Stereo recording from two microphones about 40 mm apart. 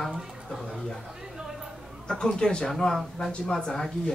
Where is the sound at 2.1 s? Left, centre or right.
Centre.